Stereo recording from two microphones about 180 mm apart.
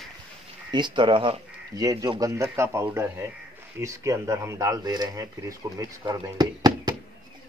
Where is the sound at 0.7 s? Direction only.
25° right (ahead or behind).